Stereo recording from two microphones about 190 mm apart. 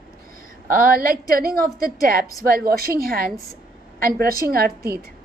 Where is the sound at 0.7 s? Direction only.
50° right (ahead or behind).